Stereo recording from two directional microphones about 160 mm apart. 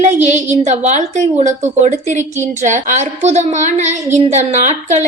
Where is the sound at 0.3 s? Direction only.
50° right (ahead or behind).